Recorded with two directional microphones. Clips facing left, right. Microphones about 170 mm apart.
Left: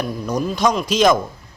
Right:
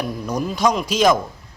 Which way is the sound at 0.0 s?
10° right (ahead or behind).